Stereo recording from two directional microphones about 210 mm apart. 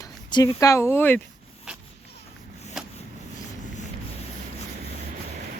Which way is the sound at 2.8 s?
Centre (ahead or behind).